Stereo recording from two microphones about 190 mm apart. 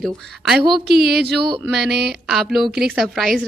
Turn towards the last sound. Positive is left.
turn(degrees=0)  # may be behind; listen again after turning